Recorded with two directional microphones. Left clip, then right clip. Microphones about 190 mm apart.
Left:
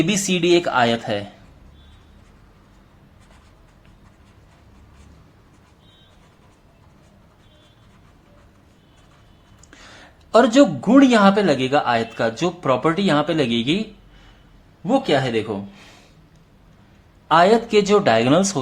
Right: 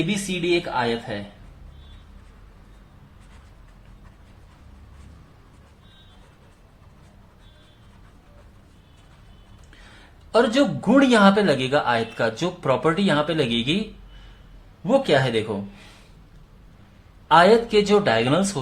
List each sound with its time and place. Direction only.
0.1 s speech: 50° left (ahead or behind)
10.3 s speech: 25° left (ahead or behind)
10.8 s speech: 10° left (ahead or behind)
14.8 s speech: 10° left (ahead or behind)
17.2 s speech: 20° left (ahead or behind)